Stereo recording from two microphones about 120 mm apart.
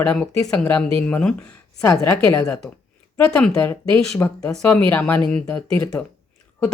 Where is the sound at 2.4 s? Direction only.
5° left (ahead or behind).